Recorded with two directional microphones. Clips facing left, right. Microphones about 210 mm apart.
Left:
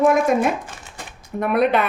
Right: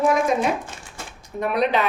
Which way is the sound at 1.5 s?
55° left (ahead or behind).